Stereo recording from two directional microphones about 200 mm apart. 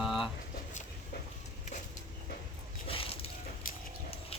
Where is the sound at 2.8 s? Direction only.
25° left (ahead or behind).